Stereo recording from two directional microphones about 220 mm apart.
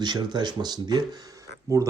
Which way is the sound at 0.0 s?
20° right (ahead or behind).